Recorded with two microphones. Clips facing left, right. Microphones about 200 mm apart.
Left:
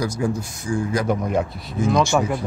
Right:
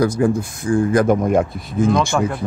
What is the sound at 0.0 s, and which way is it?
Speech, 55° right (ahead or behind).